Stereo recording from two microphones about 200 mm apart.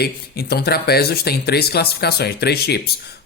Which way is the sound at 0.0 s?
50° left (ahead or behind).